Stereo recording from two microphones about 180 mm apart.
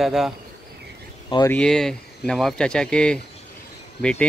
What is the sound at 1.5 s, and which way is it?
Speech, 5° left (ahead or behind).